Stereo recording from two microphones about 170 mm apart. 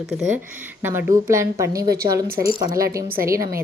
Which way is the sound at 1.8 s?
60° right (ahead or behind).